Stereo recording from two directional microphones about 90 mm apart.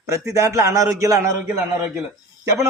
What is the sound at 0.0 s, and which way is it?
A man's voice, 35° right (ahead or behind).